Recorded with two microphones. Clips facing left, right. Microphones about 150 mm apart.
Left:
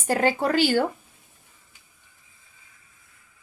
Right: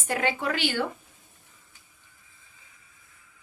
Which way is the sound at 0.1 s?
40° left (ahead or behind).